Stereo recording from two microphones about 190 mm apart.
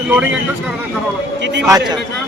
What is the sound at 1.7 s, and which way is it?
Speech, 20° right (ahead or behind).